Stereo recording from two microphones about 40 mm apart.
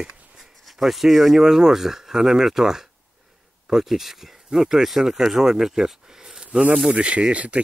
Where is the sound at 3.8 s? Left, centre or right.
Centre.